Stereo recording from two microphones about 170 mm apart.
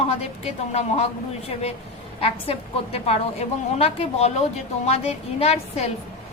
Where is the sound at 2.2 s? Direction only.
35° left (ahead or behind).